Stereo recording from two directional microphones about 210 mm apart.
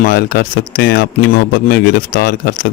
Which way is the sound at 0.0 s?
50° left (ahead or behind).